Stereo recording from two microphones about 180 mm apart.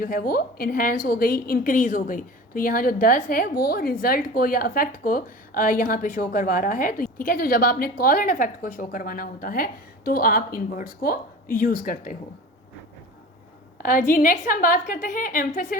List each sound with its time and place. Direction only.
0.0 s a woman's voice: 50° left (ahead or behind)
14.1 s a woman's voice: 50° left (ahead or behind)